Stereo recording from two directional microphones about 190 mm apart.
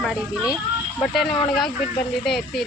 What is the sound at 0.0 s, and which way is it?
Speech, centre (ahead or behind).